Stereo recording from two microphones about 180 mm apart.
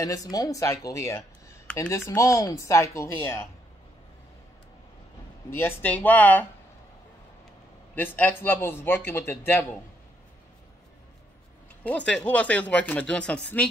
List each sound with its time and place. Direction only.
0.0 s speech: 20° left (ahead or behind)
5.5 s speech: 10° left (ahead or behind)
7.9 s speech: 10° left (ahead or behind)
11.8 s speech: 10° left (ahead or behind)